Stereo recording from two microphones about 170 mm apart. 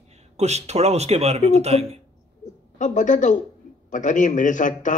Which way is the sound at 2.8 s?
45° left (ahead or behind).